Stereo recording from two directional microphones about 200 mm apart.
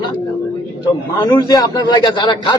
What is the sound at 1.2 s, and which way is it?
A man's voice, 20° left (ahead or behind).